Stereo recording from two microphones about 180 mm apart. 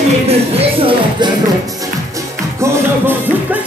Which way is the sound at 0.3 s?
30° right (ahead or behind).